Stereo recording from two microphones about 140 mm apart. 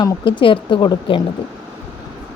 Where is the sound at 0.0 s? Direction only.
35° left (ahead or behind).